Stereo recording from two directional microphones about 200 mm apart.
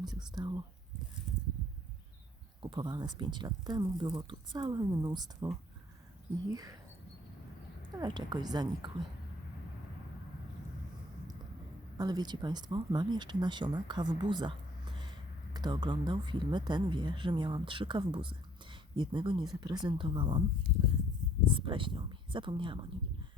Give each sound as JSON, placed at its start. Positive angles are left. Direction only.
{"t": 0.0, "sound": "whispering", "side_deg": -20}
{"t": 2.6, "sound": "speech", "side_deg": -25}
{"t": 6.5, "sound": "speech", "side_deg": -20}
{"t": 7.9, "sound": "speech", "side_deg": -20}
{"t": 11.9, "sound": "speech", "side_deg": -20}
{"t": 21.4, "sound": "speech", "side_deg": -25}